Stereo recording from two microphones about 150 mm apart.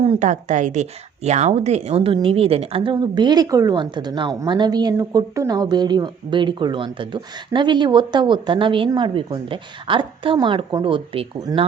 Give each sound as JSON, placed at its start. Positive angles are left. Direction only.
{"t": 0.2, "sound": "a woman's voice", "side_deg": -55}